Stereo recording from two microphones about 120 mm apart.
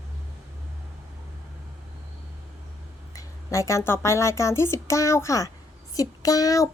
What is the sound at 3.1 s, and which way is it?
Speech, 25° left (ahead or behind).